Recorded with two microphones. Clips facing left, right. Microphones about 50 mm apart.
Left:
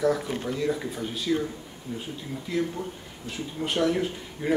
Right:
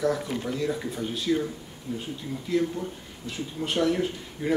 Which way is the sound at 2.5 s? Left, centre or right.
Centre.